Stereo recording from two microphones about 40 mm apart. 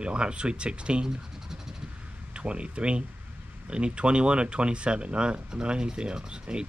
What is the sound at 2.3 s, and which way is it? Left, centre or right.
Speech, right.